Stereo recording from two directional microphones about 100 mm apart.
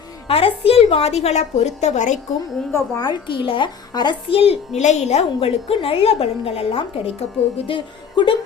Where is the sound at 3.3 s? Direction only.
55° left (ahead or behind).